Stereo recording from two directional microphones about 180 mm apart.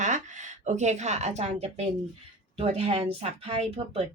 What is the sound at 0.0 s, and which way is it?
Speech, 45° right (ahead or behind).